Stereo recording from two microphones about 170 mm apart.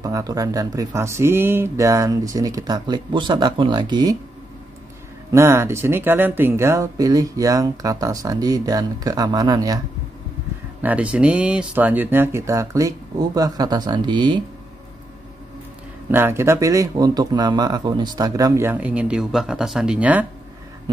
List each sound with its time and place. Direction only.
0.0 s speech: 20° right (ahead or behind)
5.3 s speech: 15° right (ahead or behind)
10.8 s speech: 10° right (ahead or behind); by 14.4 s 25° right (ahead or behind)
16.1 s speech: 15° right (ahead or behind)